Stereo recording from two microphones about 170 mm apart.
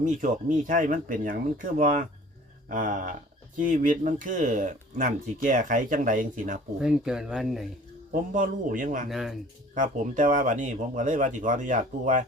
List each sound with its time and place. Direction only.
0.0 s speech: 50° right (ahead or behind)
6.7 s speech: 5° right (ahead or behind)
8.1 s speech: 50° right (ahead or behind)
9.0 s speech: centre (ahead or behind)
9.7 s speech: 50° right (ahead or behind)